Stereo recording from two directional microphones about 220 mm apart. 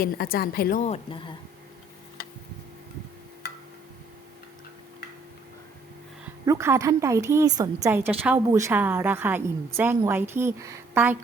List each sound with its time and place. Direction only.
0.0 s a woman's voice: 40° left (ahead or behind)
6.4 s a woman's voice: 15° right (ahead or behind)